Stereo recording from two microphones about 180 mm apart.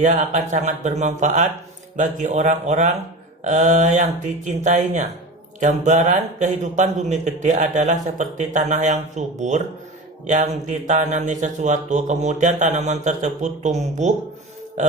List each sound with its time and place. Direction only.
0.0 s speech: 40° right (ahead or behind)